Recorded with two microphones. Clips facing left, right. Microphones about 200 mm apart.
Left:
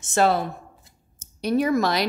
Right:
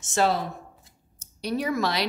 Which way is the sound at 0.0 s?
55° left (ahead or behind).